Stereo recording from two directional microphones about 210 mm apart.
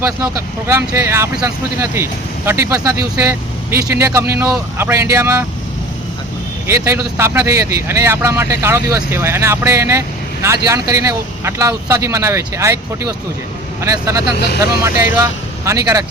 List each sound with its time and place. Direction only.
0.0 s speech: 10° right (ahead or behind)
6.7 s speech: 15° right (ahead or behind)